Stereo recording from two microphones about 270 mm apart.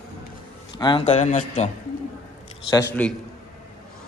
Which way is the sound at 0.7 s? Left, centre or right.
Centre.